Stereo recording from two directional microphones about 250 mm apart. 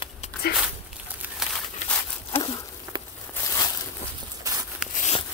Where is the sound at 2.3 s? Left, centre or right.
Centre.